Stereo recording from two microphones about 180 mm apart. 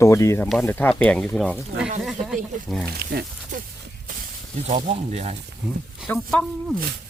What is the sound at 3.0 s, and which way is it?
Speech, 60° right (ahead or behind).